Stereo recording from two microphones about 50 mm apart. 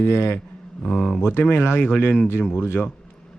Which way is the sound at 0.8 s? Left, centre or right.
Centre.